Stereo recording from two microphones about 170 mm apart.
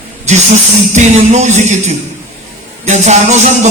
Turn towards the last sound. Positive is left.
turn(degrees=-45)  # may be behind; listen again after turning